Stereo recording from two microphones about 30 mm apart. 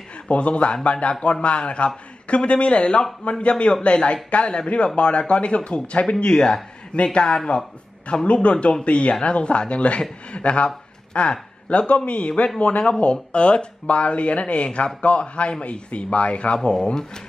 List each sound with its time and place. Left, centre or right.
0.3 s a man's voice: left
8.3 s a man's voice: left
16.8 s speech: left